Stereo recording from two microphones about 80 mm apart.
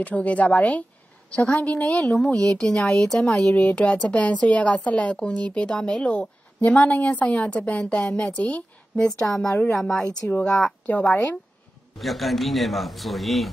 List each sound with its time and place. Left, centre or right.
0.0 s speech: centre
8.9 s speech: centre
12.0 s a man's voice: centre